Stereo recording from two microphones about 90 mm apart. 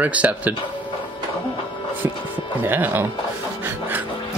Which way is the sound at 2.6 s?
25° right (ahead or behind).